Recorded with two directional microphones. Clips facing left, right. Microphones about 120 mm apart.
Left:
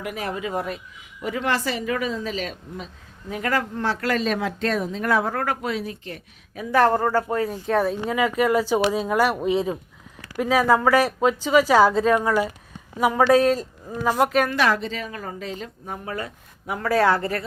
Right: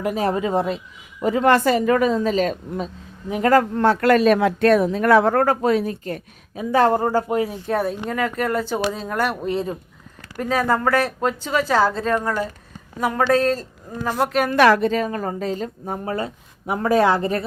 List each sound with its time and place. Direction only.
0.0 s a woman's voice: 30° right (ahead or behind)
1.2 s a woman's voice: 40° right (ahead or behind)
3.6 s speech: 55° right (ahead or behind)
5.4 s a woman's voice: 45° right (ahead or behind)
6.5 s speech: 25° right (ahead or behind)
7.5 s speech: centre (ahead or behind)
14.5 s a woman's voice: 60° right (ahead or behind); by 17.4 s 20° right (ahead or behind)